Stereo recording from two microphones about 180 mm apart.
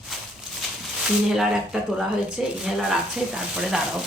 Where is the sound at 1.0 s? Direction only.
Centre (ahead or behind).